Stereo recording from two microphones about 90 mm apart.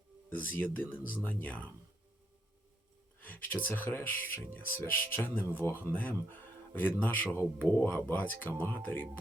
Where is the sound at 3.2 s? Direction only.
20° left (ahead or behind).